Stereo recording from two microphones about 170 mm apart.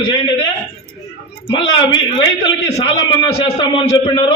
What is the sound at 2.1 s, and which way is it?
A man's voice, 30° left (ahead or behind).